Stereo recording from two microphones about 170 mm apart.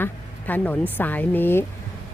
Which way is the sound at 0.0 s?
10° left (ahead or behind).